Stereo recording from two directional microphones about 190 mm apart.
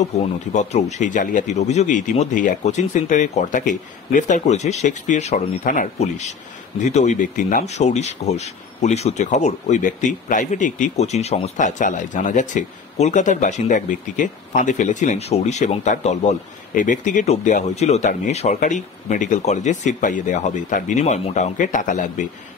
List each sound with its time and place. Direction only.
0.0 s speech: 35° left (ahead or behind)